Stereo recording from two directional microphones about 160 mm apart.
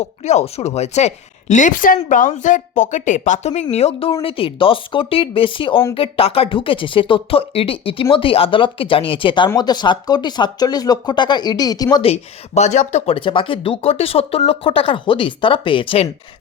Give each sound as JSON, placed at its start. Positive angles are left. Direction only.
{"t": 0.0, "sound": "a woman's voice", "side_deg": 45}
{"t": 12.0, "sound": "speech", "side_deg": 45}